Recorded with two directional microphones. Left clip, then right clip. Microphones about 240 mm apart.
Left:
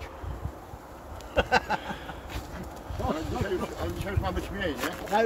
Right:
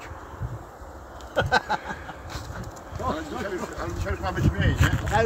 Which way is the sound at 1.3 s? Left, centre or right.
Centre.